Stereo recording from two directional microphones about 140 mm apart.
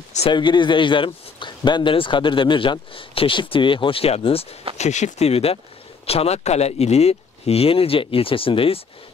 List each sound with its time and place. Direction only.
0.3 s speech: 35° left (ahead or behind)
4.7 s speech: 55° left (ahead or behind)